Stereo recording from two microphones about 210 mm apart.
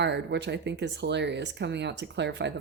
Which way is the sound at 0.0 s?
55° right (ahead or behind).